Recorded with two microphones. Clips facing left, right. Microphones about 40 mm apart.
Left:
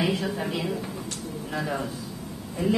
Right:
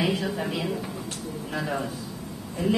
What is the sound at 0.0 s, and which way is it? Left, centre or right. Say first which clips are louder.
A woman's voice: even; centre.